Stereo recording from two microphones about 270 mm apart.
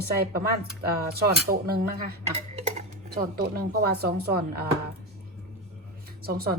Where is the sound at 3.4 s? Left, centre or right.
Right.